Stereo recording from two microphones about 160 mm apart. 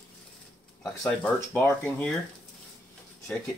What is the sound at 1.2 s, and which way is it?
Speech, 10° left (ahead or behind).